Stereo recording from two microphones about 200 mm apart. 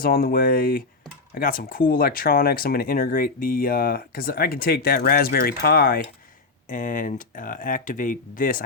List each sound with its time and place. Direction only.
0.0 s speech: 45° left (ahead or behind)